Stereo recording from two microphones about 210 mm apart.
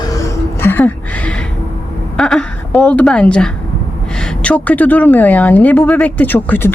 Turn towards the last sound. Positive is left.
turn(degrees=10)  # may be behind; listen again after turning